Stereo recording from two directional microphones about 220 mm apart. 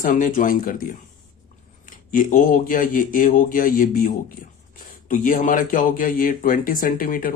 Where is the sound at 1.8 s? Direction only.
35° left (ahead or behind).